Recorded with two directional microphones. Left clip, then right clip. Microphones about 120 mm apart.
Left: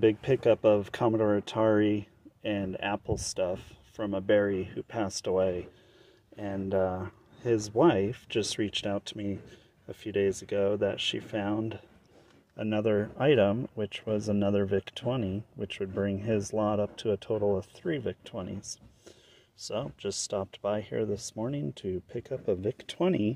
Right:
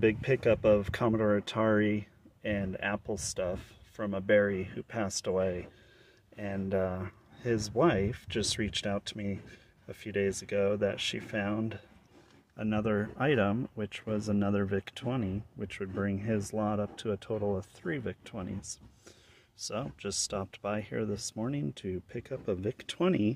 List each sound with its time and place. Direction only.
0.0 s speech: 5° left (ahead or behind)
12.5 s speech: 15° left (ahead or behind)
19.6 s speech: centre (ahead or behind)